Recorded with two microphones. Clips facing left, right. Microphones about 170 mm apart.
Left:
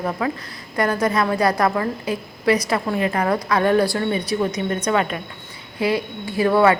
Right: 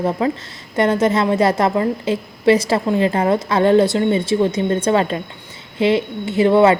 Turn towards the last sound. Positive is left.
turn(degrees=-25)  # may be behind; listen again after turning